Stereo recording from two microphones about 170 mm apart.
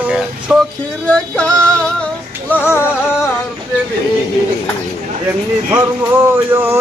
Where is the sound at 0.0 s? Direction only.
10° right (ahead or behind).